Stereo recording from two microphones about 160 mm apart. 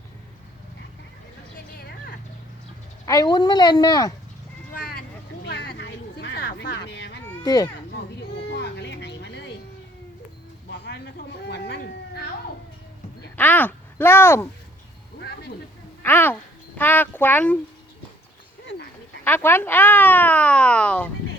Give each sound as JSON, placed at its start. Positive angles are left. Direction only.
{"t": 3.1, "sound": "speech", "side_deg": 25}
{"t": 4.7, "sound": "vehicle", "side_deg": 65}
{"t": 5.5, "sound": "a sound", "side_deg": 90}
{"t": 7.4, "sound": "a child's voice", "side_deg": 25}
{"t": 8.4, "sound": "a sound", "side_deg": 90}
{"t": 10.8, "sound": "a sound", "side_deg": 90}
{"t": 13.3, "sound": "speech", "side_deg": 10}
{"t": 16.0, "sound": "speech", "side_deg": 10}
{"t": 19.2, "sound": "speech", "side_deg": 15}